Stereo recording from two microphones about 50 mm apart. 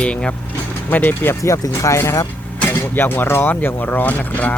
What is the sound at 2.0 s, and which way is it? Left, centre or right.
Speech, left.